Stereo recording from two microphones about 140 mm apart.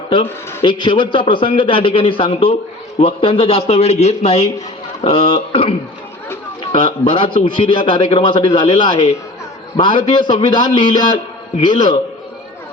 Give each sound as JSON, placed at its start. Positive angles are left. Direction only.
{"t": 0.1, "sound": "a man's voice", "side_deg": 35}